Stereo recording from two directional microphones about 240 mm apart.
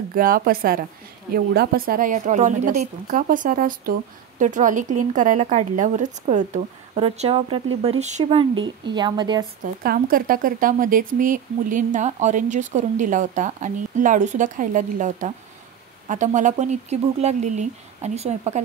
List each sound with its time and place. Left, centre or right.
0.1 s speech: right; by 9.5 s centre
9.8 s speech: right